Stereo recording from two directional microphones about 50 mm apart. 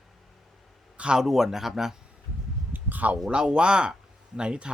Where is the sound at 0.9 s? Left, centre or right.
Centre.